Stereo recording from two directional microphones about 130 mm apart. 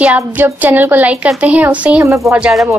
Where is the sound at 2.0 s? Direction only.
25° right (ahead or behind).